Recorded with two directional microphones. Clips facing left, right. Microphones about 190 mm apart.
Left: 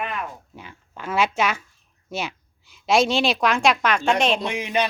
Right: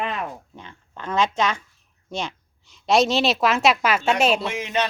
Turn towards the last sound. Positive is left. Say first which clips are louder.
# left 1 dB
turn(degrees=15)  # may be behind; listen again after turning